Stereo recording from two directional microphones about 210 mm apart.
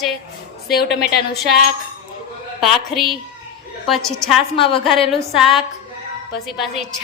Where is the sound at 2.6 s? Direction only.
Centre (ahead or behind).